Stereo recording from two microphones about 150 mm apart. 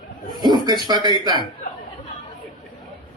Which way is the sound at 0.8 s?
30° right (ahead or behind).